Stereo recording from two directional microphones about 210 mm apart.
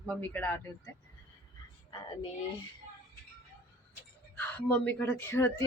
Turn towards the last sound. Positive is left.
turn(degrees=10)  # may be behind; listen again after turning